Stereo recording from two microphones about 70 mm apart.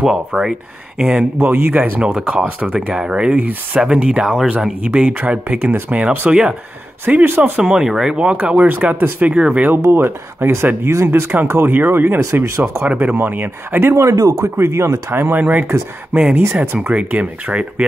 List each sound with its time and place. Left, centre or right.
0.0 s speech: centre
1.4 s speech: right
2.0 s speech: centre
7.2 s speech: right
7.5 s speech: centre
9.2 s speech: centre
9.8 s speech: right
12.8 s speech: right
14.0 s speech: right; by 17.8 s centre